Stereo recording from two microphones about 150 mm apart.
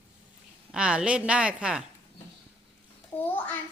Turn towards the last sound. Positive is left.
turn(degrees=10)  # may be behind; listen again after turning